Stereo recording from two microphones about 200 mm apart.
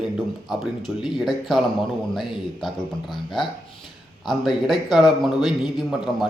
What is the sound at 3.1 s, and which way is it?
A man's voice, centre (ahead or behind).